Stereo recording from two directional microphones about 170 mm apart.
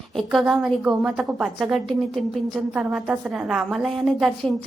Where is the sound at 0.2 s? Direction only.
Centre (ahead or behind).